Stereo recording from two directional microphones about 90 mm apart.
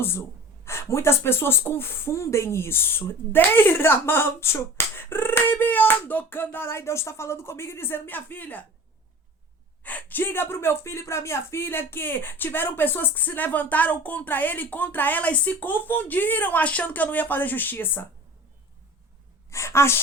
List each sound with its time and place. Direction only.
0.0 s speech: 25° left (ahead or behind)
9.8 s speech: 20° left (ahead or behind)
19.5 s speech: 30° left (ahead or behind)